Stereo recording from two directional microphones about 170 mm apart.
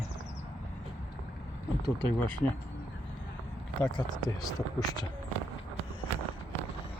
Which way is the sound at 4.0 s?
25° left (ahead or behind).